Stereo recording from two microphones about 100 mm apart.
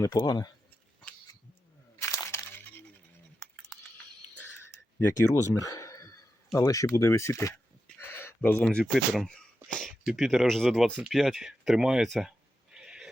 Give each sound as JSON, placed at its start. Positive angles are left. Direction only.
{"t": 0.0, "sound": "speech", "side_deg": 40}
{"t": 2.0, "sound": "crunch", "side_deg": 30}
{"t": 5.3, "sound": "speech", "side_deg": 35}
{"t": 7.9, "sound": "a sound", "side_deg": 20}
{"t": 8.4, "sound": "speech", "side_deg": 15}
{"t": 8.9, "sound": "speech", "side_deg": 5}
{"t": 12.7, "sound": "a sound", "side_deg": -5}